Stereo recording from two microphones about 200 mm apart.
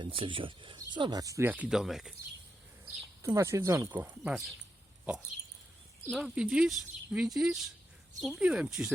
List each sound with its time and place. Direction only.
0.0 s speech: 25° right (ahead or behind); by 2.1 s centre (ahead or behind)
2.8 s speech: 15° right (ahead or behind)
6.1 s speech: centre (ahead or behind)